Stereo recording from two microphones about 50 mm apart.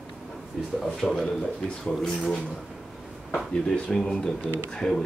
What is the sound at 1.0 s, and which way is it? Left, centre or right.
Speech, centre.